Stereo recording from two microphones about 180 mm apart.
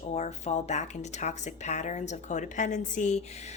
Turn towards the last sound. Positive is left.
turn(degrees=40)  # may be behind; listen again after turning